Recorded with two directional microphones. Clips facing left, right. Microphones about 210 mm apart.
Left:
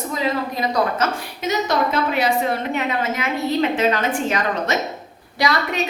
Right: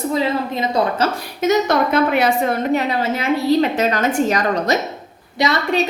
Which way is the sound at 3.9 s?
40° right (ahead or behind).